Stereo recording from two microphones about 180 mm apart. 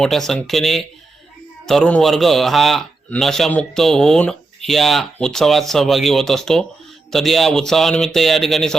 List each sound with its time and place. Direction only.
0.0 s a man's voice: centre (ahead or behind)